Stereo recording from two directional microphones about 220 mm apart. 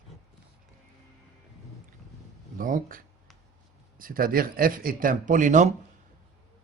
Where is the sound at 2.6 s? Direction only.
40° right (ahead or behind).